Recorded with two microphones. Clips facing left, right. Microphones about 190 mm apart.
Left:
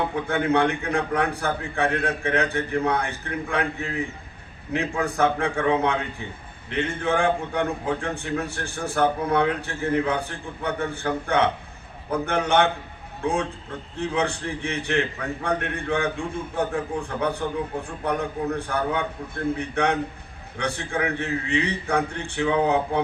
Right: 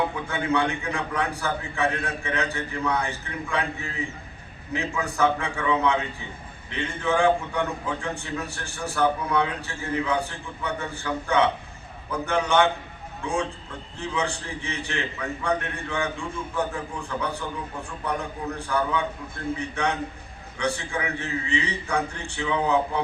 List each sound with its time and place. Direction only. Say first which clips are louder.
0.3 s a man's voice: left 6 dB; 55° left (ahead or behind)